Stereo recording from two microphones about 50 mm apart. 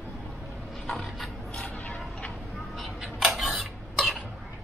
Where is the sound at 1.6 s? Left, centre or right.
Left.